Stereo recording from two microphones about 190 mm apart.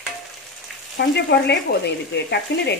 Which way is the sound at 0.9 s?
65° left (ahead or behind).